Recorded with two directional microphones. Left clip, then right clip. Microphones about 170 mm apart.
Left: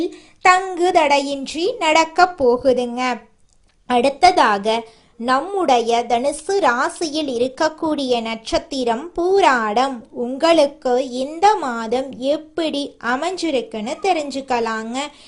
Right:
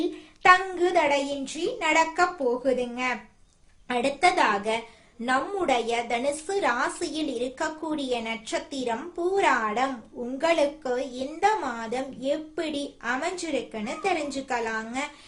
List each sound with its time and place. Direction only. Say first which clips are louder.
0.4 s a woman's voice: left 5 dB; 50° left (ahead or behind)